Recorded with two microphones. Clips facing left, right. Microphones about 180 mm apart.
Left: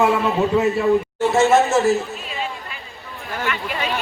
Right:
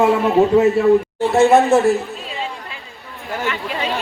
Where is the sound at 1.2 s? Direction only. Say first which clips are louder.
Right 3 dB; 35° right (ahead or behind).